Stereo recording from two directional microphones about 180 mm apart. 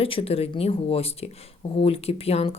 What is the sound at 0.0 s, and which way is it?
Speech, 30° left (ahead or behind).